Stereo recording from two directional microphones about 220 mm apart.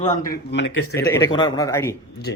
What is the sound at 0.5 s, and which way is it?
Speech, 60° left (ahead or behind).